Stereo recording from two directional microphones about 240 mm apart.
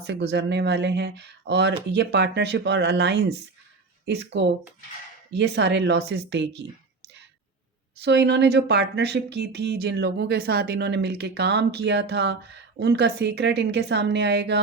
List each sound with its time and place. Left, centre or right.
0.0 s speech: right
8.0 s speech: right